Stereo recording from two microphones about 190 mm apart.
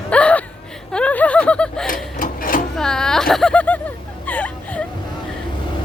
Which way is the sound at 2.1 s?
45° left (ahead or behind).